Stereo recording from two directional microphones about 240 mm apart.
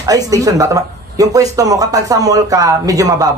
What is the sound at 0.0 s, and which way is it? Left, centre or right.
Speech, centre.